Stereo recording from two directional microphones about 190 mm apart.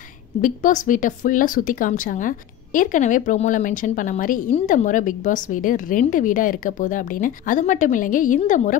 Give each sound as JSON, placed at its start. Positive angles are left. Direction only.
{"t": 0.4, "sound": "a woman's voice", "side_deg": 45}